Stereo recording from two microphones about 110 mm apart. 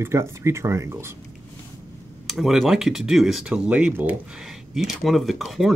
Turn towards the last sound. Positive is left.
turn(degrees=0)  # may be behind; listen again after turning